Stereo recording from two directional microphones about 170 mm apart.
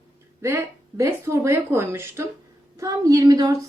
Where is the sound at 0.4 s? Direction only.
15° right (ahead or behind).